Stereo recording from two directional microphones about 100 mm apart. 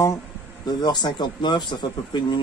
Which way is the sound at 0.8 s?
45° left (ahead or behind).